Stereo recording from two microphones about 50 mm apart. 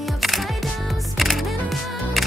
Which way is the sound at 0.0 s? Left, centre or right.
Centre.